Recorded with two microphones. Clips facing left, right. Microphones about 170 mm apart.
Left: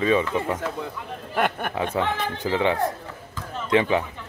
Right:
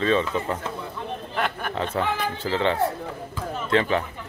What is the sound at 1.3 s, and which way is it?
Speech, 50° left (ahead or behind).